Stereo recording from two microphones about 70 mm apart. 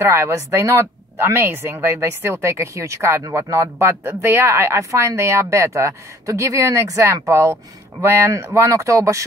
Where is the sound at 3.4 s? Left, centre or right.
Right.